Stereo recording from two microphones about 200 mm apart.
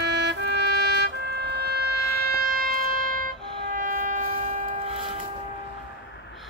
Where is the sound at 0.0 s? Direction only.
55° right (ahead or behind).